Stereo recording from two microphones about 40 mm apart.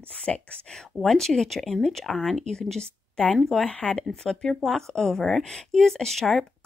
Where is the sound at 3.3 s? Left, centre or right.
Centre.